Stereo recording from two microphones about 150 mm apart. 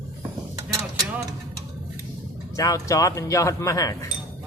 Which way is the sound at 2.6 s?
20° left (ahead or behind).